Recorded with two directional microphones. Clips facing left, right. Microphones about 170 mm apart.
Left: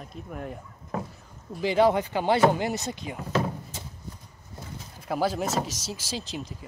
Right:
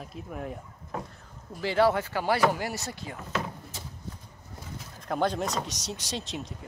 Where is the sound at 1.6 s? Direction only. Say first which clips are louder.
Left 2 dB; 20° left (ahead or behind).